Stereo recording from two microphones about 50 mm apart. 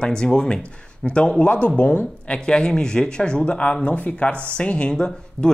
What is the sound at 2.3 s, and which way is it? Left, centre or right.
Speech, centre.